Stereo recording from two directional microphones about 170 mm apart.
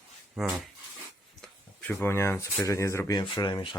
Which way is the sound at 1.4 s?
5° left (ahead or behind).